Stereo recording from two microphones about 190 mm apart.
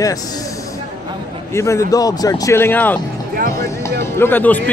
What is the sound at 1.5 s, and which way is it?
Speech, 15° left (ahead or behind).